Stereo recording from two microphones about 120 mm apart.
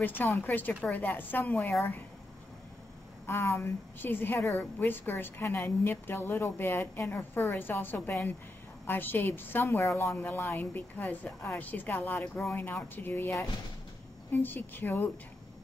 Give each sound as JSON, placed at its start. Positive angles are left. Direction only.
{"t": 0.0, "sound": "a woman's voice", "side_deg": 15}
{"t": 3.3, "sound": "a woman's voice", "side_deg": 20}